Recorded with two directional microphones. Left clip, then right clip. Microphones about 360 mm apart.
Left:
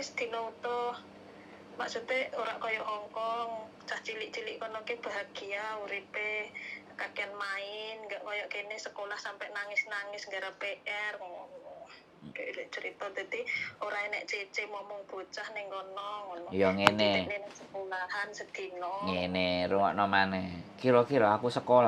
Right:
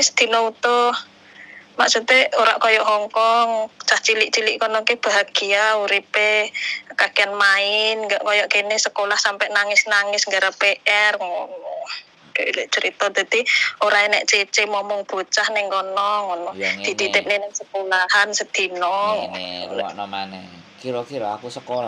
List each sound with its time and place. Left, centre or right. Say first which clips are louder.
0.0 s speech: right 19 dB; right
19.1 s mantra: right 7 dB; centre
20.0 s speech: even; centre